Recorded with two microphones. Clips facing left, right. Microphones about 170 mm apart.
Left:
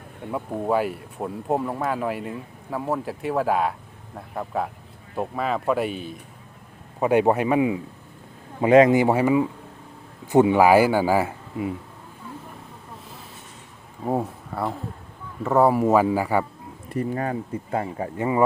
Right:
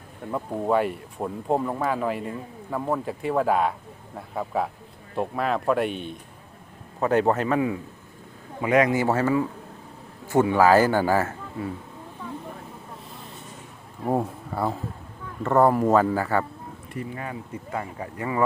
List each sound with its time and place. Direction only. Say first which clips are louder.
0.3 s speech: even; 5° left (ahead or behind)
8.6 s speech: left 6 dB; 25° left (ahead or behind)
14.0 s speech: even; centre (ahead or behind)
16.9 s speech: left 8 dB; 40° left (ahead or behind); by 18.4 s 25° left (ahead or behind)